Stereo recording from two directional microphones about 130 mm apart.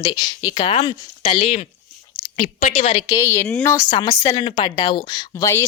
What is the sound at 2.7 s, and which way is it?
Speech, 45° left (ahead or behind).